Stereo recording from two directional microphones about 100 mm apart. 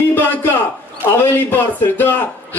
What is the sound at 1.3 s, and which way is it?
Speech, 20° left (ahead or behind).